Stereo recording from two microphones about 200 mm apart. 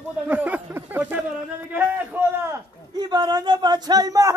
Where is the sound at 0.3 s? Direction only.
10° right (ahead or behind).